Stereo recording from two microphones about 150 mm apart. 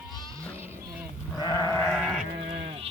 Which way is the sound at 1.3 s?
25° left (ahead or behind).